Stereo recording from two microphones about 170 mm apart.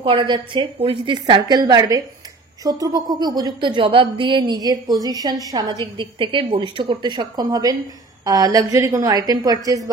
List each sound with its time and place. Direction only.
0.0 s a woman's voice: 30° right (ahead or behind)